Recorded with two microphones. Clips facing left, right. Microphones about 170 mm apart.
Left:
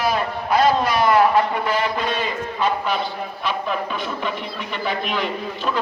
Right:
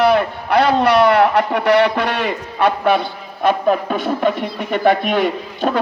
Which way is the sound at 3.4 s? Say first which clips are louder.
Right 10 dB; 50° right (ahead or behind).